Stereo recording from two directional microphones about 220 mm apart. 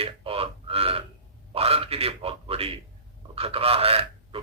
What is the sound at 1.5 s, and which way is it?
A man's voice, 25° right (ahead or behind).